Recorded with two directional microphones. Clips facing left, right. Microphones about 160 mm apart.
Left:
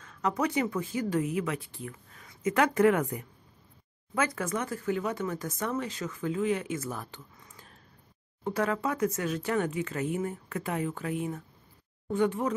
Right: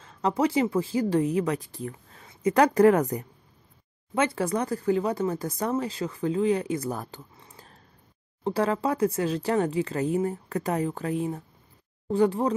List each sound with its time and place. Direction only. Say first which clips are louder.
0.0 s speech: right 5 dB; 30° right (ahead or behind)
7.3 s a sound: right 3 dB; 35° right (ahead or behind)
8.5 s speech: right 4 dB; 30° right (ahead or behind)